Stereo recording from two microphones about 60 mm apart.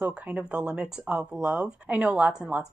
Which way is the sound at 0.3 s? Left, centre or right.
Right.